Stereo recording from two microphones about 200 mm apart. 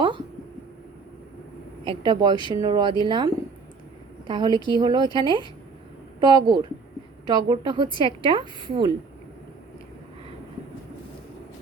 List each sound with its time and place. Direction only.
1.8 s a woman's voice: 25° right (ahead or behind)